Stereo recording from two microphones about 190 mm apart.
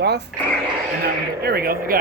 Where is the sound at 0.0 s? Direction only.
60° right (ahead or behind).